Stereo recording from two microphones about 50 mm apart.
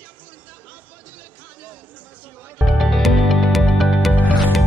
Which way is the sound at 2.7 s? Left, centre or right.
Centre.